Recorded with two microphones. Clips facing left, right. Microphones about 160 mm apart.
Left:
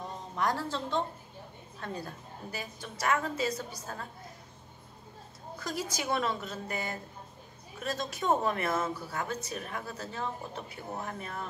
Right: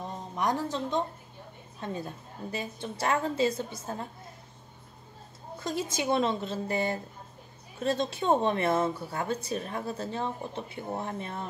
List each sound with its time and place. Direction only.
0.4 s a woman's voice: 20° right (ahead or behind)
5.6 s a woman's voice: 25° right (ahead or behind)